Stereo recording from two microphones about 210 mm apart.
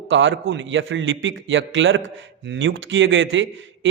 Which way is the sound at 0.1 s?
65° right (ahead or behind).